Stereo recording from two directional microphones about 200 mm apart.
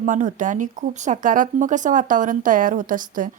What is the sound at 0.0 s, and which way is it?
Speech, 40° right (ahead or behind).